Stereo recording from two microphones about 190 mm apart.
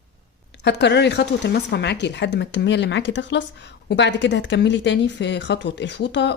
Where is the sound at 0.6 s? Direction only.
65° left (ahead or behind).